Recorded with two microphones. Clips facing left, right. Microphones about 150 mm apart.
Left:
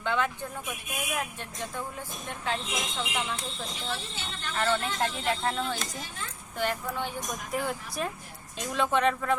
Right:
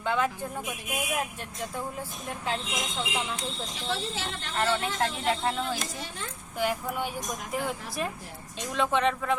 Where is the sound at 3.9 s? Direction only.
90° right.